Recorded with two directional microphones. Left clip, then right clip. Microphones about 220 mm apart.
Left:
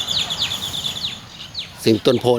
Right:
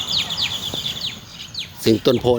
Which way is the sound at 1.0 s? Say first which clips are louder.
Left 1 dB; 40° right (ahead or behind).